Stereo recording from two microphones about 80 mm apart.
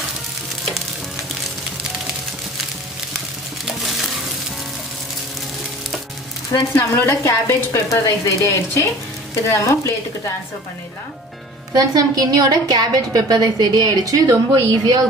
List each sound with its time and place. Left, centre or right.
6.5 s speech: left
7.0 s a woman's voice: left
11.7 s a woman's voice: right